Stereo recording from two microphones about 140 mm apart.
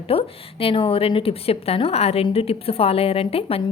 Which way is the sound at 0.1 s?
40° left (ahead or behind).